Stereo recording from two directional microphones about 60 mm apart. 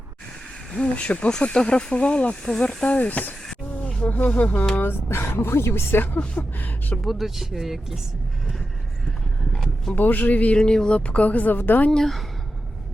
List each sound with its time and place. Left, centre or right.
0.7 s speech: centre
3.8 s a sound: left
4.8 s speech: left
7.0 s speech: centre
9.5 s a sound: centre
9.9 s speech: left
10.6 s speech: centre; by 11.9 s left
11.9 s speech: centre